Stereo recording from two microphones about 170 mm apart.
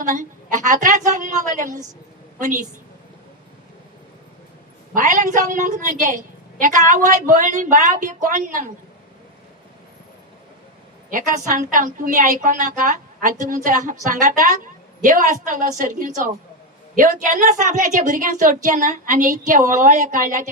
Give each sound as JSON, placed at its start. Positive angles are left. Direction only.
{"t": 0.0, "sound": "a woman's voice", "side_deg": -50}
{"t": 4.9, "sound": "a woman's voice", "side_deg": -50}
{"t": 11.1, "sound": "a woman's voice", "side_deg": -50}